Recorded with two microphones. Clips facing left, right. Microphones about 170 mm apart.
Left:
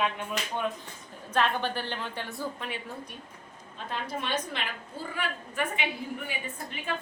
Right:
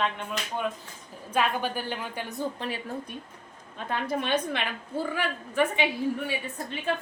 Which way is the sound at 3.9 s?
55° right (ahead or behind).